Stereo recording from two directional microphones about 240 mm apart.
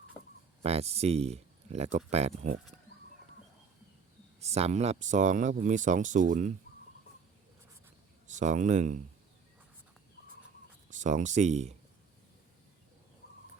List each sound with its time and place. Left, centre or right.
0.6 s speech: right
4.4 s speech: right
8.3 s speech: right
10.9 s speech: right